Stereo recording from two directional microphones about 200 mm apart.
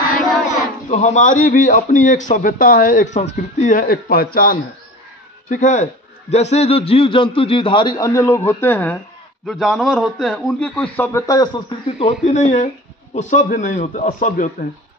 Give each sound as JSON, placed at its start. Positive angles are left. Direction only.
{"t": 0.8, "sound": "a man's voice", "side_deg": 35}
{"t": 12.1, "sound": "a man's voice", "side_deg": 35}